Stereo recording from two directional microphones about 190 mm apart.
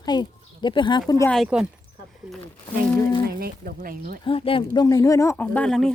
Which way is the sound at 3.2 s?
50° right (ahead or behind).